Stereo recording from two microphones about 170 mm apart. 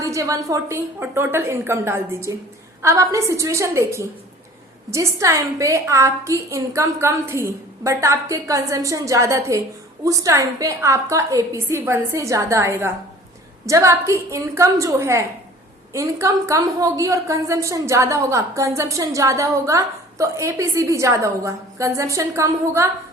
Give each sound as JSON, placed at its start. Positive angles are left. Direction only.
{"t": 0.0, "sound": "a woman's voice", "side_deg": -20}